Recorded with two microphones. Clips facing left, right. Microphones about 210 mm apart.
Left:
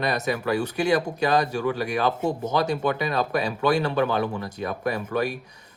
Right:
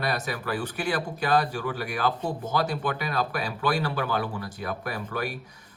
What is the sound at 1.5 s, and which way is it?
Speech, 25° left (ahead or behind).